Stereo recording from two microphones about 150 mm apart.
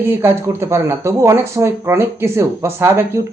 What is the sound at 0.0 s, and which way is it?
Speech, 15° right (ahead or behind).